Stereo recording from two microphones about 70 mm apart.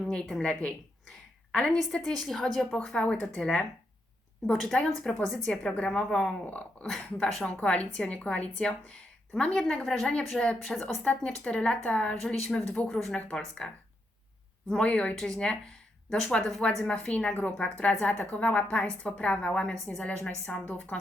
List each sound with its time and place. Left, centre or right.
0.0 s a woman's voice: centre
1.5 s a woman's voice: centre
2.7 s a woman's voice: centre
6.4 s speech: left
6.8 s a woman's voice: centre
14.7 s a woman's voice: centre
20.4 s a woman's voice: centre